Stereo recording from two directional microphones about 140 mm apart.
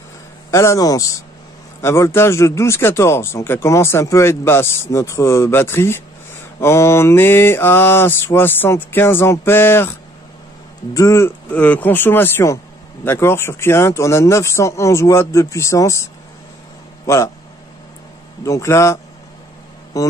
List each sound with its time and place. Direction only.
0.5 s speech: 20° left (ahead or behind)
6.6 s mantra: 20° left (ahead or behind)
13.0 s speech: 15° left (ahead or behind)
18.4 s speech: 20° left (ahead or behind)